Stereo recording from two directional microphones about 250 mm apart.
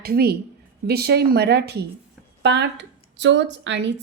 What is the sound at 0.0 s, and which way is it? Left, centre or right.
A woman's voice, right.